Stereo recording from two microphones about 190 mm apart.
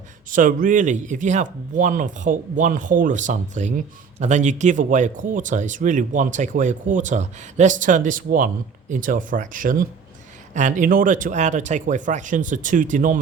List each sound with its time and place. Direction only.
0.3 s speech: 45° right (ahead or behind)